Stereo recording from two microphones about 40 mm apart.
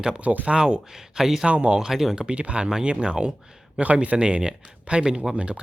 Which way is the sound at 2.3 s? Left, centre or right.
Right.